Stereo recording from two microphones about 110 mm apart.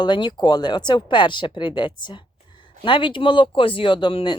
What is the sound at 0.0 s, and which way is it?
Speech, 45° left (ahead or behind).